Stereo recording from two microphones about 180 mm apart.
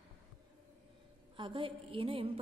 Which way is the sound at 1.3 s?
30° right (ahead or behind).